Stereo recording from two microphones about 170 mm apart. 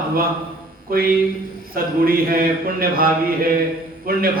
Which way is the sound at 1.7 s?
60° right (ahead or behind).